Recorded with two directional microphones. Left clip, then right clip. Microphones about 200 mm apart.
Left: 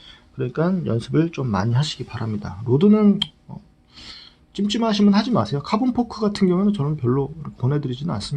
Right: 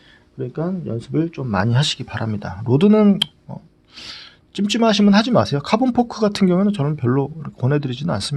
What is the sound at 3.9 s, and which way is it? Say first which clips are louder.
Speech: right 5 dB; 55° right (ahead or behind).